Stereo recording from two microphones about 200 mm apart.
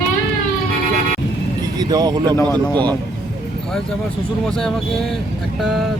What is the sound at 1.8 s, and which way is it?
Speech, 20° right (ahead or behind).